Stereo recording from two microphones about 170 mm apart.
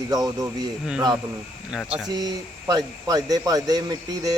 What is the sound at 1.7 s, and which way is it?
Speech, 5° right (ahead or behind).